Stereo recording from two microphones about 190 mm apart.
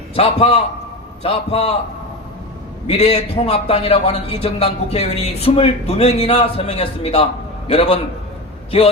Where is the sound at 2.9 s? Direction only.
30° left (ahead or behind).